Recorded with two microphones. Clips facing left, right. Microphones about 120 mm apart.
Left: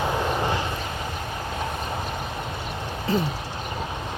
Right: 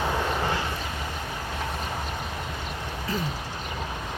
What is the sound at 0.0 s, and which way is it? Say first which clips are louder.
Vehicle: left 2 dB; 15° left (ahead or behind).